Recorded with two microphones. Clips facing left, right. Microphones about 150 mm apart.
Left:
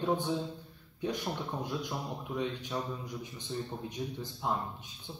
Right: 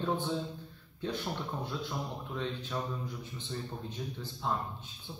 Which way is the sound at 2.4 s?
15° left (ahead or behind).